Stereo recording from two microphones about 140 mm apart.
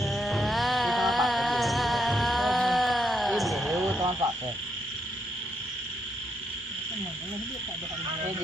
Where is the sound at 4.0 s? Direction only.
30° right (ahead or behind).